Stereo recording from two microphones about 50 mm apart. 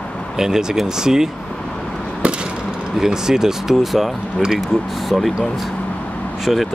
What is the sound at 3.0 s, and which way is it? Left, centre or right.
Speech, centre.